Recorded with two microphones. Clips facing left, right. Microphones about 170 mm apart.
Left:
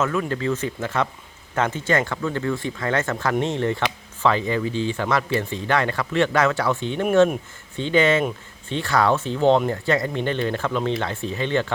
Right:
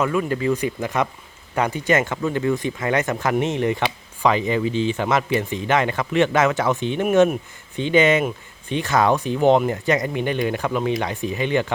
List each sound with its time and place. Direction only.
0.0 s speech: 10° right (ahead or behind)